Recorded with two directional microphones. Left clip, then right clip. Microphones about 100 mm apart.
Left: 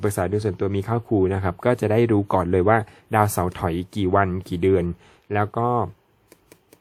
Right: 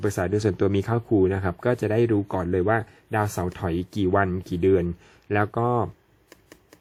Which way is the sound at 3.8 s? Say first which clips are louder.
Left 2 dB; 25° left (ahead or behind).